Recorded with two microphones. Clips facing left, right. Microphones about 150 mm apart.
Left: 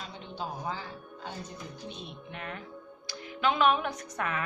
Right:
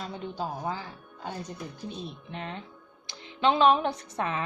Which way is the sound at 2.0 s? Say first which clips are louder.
Right 3 dB; 30° right (ahead or behind).